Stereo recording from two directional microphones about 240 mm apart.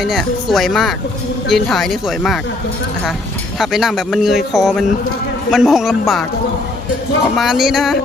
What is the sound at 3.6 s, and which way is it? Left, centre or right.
A man's voice, centre.